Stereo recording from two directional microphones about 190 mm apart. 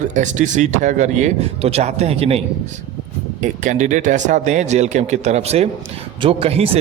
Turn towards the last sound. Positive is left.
turn(degrees=-30)  # may be behind; listen again after turning